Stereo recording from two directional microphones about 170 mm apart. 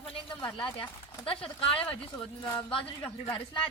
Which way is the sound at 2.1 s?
20° left (ahead or behind).